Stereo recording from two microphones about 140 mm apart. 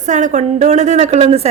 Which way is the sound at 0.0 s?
60° right (ahead or behind).